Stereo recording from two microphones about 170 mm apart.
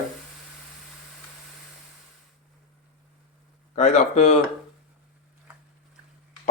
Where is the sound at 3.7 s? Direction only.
40° left (ahead or behind).